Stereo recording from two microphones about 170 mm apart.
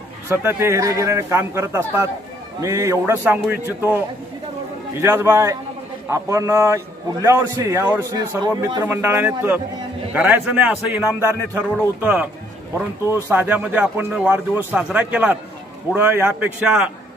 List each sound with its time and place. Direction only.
0.3 s a man's voice: 15° right (ahead or behind)
5.0 s a man's voice: 15° right (ahead or behind)